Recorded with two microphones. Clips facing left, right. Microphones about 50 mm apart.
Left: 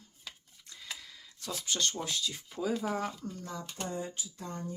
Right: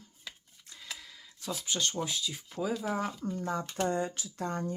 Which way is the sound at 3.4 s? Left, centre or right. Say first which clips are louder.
Right 8 dB; right.